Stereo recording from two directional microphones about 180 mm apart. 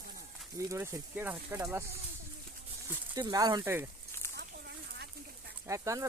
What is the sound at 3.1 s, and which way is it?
Speech, 20° right (ahead or behind).